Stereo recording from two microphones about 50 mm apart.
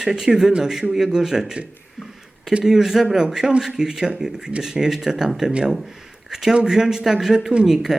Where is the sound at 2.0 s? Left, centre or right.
Centre.